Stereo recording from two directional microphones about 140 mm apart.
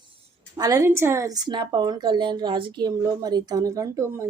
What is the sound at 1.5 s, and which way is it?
Speech, 35° right (ahead or behind).